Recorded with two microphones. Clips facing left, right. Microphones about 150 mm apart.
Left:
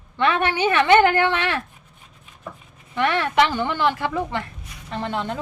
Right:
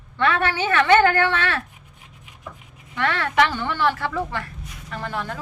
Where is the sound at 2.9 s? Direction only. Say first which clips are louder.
Left 2 dB; 15° left (ahead or behind).